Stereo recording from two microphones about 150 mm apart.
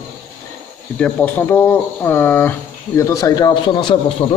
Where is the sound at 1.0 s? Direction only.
10° left (ahead or behind); by 4.1 s 30° left (ahead or behind).